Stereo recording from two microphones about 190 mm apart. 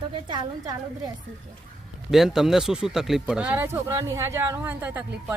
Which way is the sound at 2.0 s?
Centre (ahead or behind).